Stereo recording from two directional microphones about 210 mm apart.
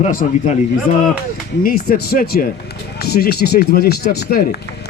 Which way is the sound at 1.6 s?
40° left (ahead or behind).